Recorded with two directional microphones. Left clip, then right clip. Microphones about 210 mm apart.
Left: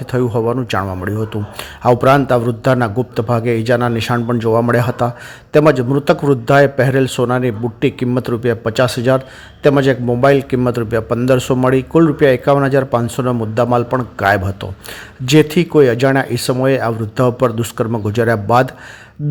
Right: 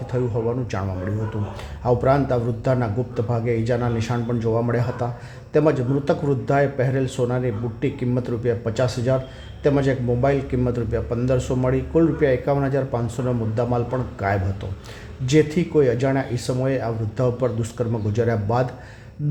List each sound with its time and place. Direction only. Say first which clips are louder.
0.1 s a man's voice: left 8 dB; 35° left (ahead or behind)